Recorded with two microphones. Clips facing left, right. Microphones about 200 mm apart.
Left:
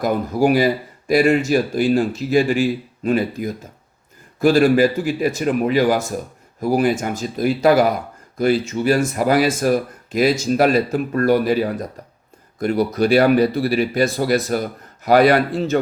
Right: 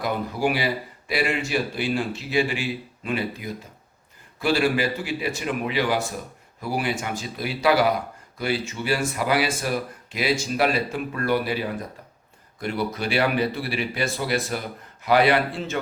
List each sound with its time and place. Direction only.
0.0 s speech: 45° left (ahead or behind)